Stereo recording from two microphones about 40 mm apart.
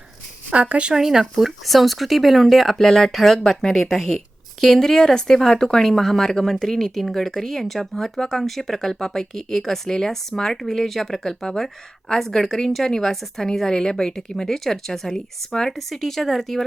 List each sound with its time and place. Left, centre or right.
0.5 s speech: right
0.9 s speech: centre
2.7 s speech: centre